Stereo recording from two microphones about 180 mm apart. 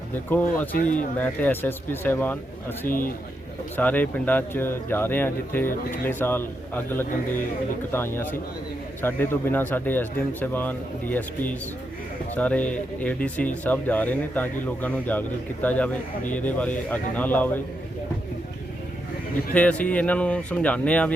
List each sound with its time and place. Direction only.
0.3 s speech: 10° left (ahead or behind)
0.8 s a man's voice: 45° left (ahead or behind)
1.2 s speech: 10° left (ahead or behind)
2.8 s a man's voice: 50° left (ahead or behind)
3.8 s speech: 10° left (ahead or behind)
19.5 s speech: 5° left (ahead or behind)